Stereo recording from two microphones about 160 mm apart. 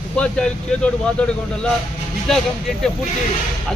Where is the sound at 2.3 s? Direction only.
Centre (ahead or behind).